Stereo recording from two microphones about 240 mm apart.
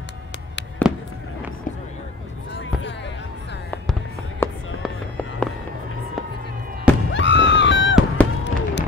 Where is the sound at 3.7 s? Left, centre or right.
Centre.